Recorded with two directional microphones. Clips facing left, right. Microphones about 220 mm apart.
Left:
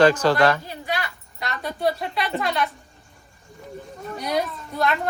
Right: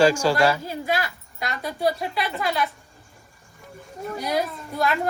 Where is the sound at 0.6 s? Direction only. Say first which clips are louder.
Right 3 dB; 45° right (ahead or behind).